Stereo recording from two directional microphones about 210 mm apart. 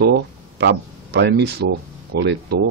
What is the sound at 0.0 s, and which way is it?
Speech, 50° right (ahead or behind).